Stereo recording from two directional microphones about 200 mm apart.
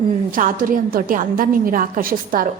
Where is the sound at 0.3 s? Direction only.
40° right (ahead or behind).